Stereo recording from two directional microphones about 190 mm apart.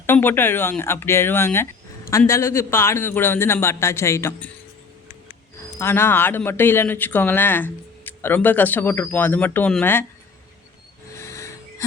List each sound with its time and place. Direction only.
0.0 s speech: 10° left (ahead or behind)
5.5 s speech: 10° left (ahead or behind)
11.1 s a sound: 15° left (ahead or behind)